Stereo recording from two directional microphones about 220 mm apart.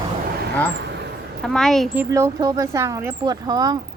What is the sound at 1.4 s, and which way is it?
Speech, centre (ahead or behind).